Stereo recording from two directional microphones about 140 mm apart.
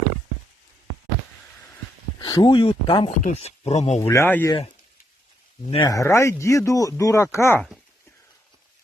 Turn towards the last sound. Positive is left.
turn(degrees=20)  # may be behind; listen again after turning